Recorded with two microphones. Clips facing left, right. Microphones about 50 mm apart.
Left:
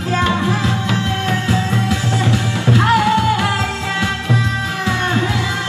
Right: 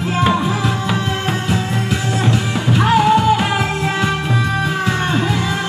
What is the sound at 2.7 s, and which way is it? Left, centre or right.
Music, right.